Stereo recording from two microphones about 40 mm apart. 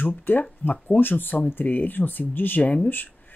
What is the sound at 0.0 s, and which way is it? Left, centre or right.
Speech, left.